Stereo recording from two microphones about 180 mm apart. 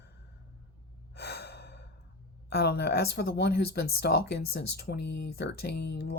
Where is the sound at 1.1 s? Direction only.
65° left (ahead or behind).